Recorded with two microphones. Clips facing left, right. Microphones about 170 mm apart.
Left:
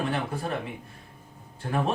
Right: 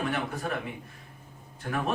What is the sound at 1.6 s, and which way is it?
Speech, 30° left (ahead or behind).